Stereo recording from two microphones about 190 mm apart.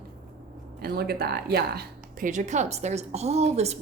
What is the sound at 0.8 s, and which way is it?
A woman's voice, 55° right (ahead or behind).